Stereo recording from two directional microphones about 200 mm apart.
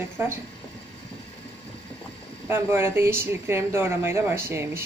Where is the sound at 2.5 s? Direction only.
10° right (ahead or behind).